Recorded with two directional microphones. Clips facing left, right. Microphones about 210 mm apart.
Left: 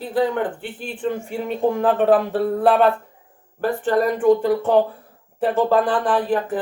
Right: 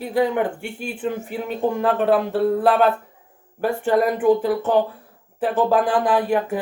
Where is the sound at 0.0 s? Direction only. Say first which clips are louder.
Right 1 dB; 10° right (ahead or behind).